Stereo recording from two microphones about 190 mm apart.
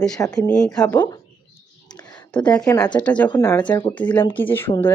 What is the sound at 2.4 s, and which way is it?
Speech, 5° left (ahead or behind).